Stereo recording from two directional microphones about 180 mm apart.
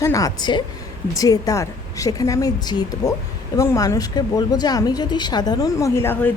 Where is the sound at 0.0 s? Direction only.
20° left (ahead or behind).